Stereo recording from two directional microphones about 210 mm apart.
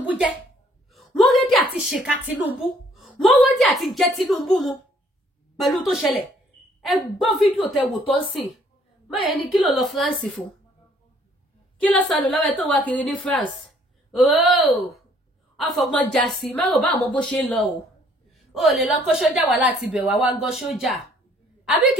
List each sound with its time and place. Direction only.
0.0 s a sound: 5° right (ahead or behind)
2.5 s a woman's voice: centre (ahead or behind)
11.8 s a woman's voice: 5° left (ahead or behind)